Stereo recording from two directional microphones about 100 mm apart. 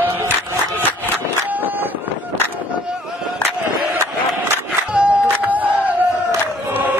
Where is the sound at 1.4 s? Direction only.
20° right (ahead or behind).